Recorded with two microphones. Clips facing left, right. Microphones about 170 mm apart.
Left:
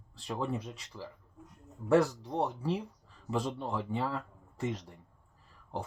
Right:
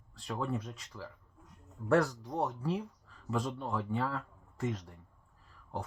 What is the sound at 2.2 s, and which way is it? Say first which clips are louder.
Speech: left 2 dB; 30° left (ahead or behind).